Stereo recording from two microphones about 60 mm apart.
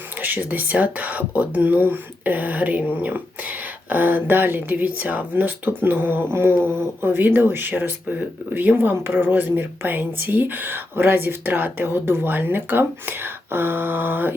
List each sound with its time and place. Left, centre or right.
0.2 s speech: right